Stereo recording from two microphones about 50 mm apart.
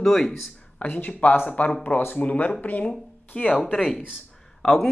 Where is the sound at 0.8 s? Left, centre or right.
Left.